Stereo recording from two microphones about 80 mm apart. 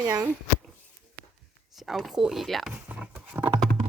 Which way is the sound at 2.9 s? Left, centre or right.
Right.